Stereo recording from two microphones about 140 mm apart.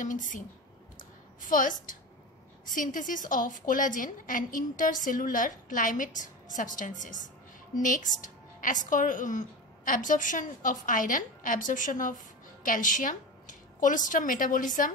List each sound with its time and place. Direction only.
0.0 s a woman's voice: 65° left (ahead or behind)
0.9 s a sound: 70° left (ahead or behind)
2.6 s a woman's voice: 70° left (ahead or behind)